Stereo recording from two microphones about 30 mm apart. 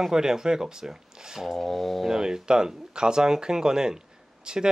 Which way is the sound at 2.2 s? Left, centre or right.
Right.